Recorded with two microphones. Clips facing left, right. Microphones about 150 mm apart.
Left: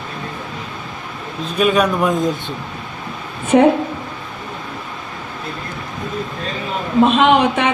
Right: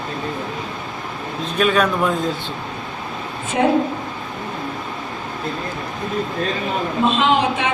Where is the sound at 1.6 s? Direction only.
10° left (ahead or behind).